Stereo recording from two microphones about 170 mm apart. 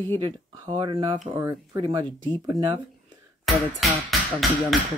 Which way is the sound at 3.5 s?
Centre (ahead or behind).